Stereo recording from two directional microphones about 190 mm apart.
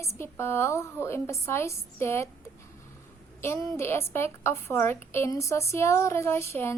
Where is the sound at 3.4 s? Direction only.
15° left (ahead or behind).